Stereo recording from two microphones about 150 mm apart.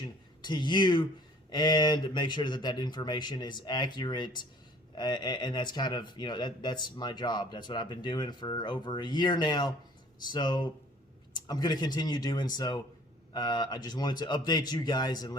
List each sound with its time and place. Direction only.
0.4 s speech: 30° left (ahead or behind)